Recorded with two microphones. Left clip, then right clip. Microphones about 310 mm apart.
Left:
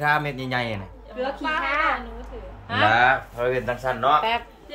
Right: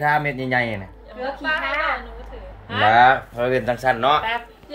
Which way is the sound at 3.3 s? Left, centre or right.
Right.